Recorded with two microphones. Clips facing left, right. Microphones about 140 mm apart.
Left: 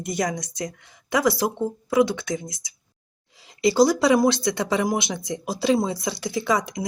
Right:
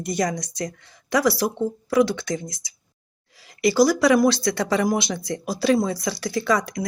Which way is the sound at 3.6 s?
25° left (ahead or behind).